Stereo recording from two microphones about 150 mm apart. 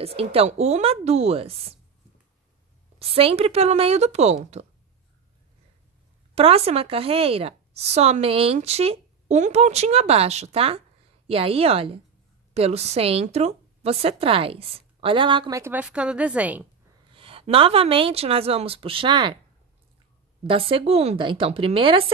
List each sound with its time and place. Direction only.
0.0 s a woman's voice: 40° right (ahead or behind)
3.0 s a woman's voice: 40° right (ahead or behind)
6.3 s a woman's voice: 40° right (ahead or behind)
15.5 s speech: 15° right (ahead or behind)
17.1 s a woman's voice: 35° right (ahead or behind)
20.4 s a woman's voice: 35° right (ahead or behind)